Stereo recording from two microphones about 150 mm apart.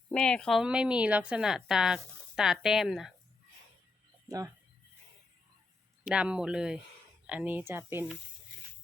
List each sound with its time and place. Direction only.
0.1 s speech: 5° left (ahead or behind)
4.3 s speech: 25° right (ahead or behind)
6.1 s speech: 5° right (ahead or behind)